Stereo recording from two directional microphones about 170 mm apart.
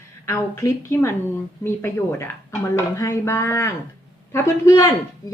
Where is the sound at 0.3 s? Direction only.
15° left (ahead or behind).